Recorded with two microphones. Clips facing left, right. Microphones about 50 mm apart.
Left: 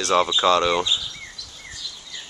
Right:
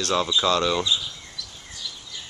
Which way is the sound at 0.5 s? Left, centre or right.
Centre.